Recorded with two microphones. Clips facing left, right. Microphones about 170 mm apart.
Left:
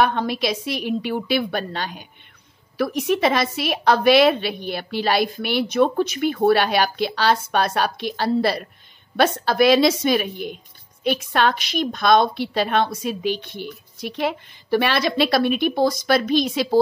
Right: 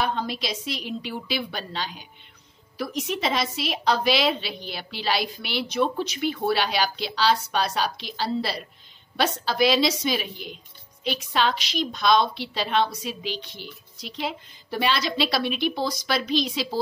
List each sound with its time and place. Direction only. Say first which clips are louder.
0.0 s a woman's voice: left 7 dB; 65° left (ahead or behind)